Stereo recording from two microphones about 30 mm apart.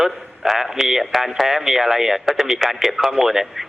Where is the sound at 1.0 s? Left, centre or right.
Centre.